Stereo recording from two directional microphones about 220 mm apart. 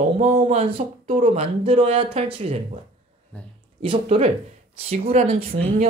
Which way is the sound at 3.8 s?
25° right (ahead or behind).